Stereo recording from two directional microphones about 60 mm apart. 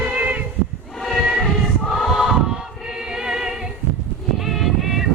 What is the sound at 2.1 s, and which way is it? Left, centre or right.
Choir, centre.